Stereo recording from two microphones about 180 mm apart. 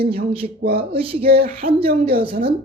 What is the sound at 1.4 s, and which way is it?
Speech, 60° right (ahead or behind).